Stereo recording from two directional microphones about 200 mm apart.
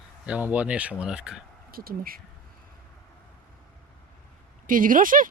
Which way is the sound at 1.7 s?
45° right (ahead or behind).